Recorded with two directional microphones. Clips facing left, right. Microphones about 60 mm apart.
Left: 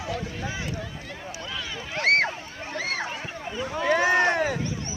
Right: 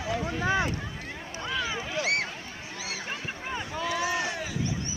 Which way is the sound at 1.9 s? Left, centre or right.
Left.